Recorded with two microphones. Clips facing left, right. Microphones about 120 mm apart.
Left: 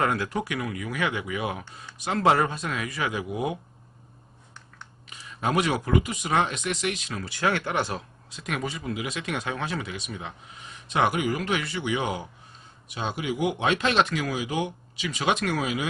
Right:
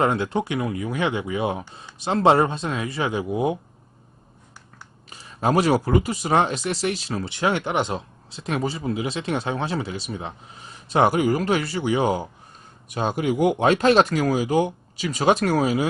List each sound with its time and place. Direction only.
0.0 s speech: 25° right (ahead or behind)
5.0 s speech: 35° right (ahead or behind)